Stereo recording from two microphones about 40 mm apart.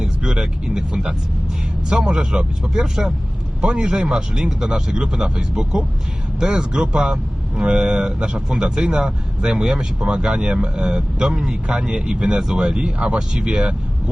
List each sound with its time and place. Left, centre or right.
0.0 s speech: centre
12.8 s speech: right
13.1 s speech: centre